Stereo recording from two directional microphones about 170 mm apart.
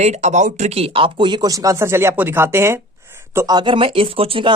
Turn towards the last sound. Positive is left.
turn(degrees=-35)  # may be behind; listen again after turning